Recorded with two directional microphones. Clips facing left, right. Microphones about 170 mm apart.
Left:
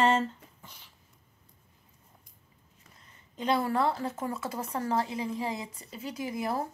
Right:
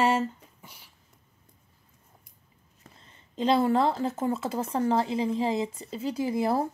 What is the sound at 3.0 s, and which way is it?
A woman's voice, 25° right (ahead or behind).